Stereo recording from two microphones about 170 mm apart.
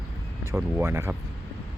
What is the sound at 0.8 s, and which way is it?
Speech, 15° right (ahead or behind).